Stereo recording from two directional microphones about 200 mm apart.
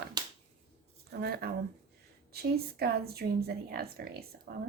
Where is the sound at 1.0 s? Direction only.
55° right (ahead or behind).